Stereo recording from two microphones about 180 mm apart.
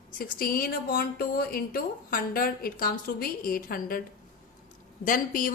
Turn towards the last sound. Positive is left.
turn(degrees=50)  # may be behind; listen again after turning